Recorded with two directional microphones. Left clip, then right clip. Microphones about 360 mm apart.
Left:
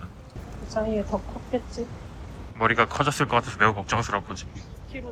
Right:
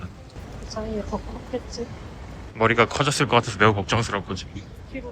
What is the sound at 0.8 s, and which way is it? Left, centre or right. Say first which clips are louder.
Speech: left 6 dB; centre.